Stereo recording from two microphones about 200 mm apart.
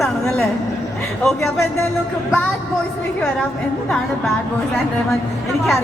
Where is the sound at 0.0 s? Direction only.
Centre (ahead or behind).